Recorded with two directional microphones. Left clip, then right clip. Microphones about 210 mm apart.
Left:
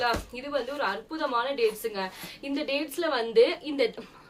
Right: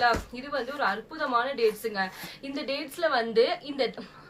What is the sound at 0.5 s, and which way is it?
A woman's voice, 15° left (ahead or behind).